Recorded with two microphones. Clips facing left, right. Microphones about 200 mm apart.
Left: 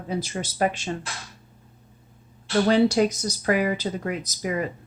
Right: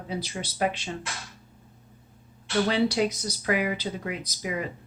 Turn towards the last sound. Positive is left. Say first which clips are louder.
# left 4 dB
turn(degrees=45)  # may be behind; listen again after turning